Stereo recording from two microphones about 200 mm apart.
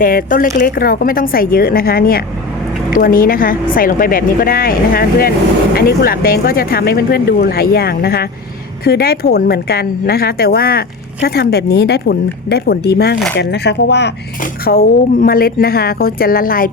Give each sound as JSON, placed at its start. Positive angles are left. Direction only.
{"t": 0.0, "sound": "a woman's voice", "side_deg": 45}
{"t": 14.6, "sound": "a woman's voice", "side_deg": 45}